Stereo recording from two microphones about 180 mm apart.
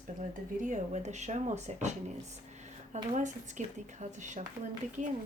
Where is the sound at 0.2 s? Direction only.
45° right (ahead or behind).